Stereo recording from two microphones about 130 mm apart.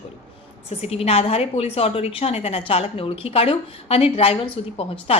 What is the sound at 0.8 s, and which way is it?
A woman's voice, 50° left (ahead or behind).